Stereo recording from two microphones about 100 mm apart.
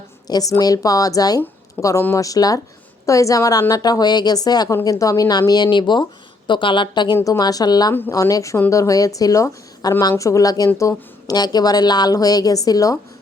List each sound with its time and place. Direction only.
0.3 s a woman's voice: 40° left (ahead or behind)
7.3 s speech: 40° left (ahead or behind)